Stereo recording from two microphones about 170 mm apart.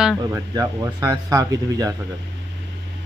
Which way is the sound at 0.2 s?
20° right (ahead or behind).